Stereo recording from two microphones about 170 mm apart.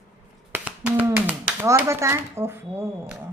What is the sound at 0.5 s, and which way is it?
Speech, 10° right (ahead or behind).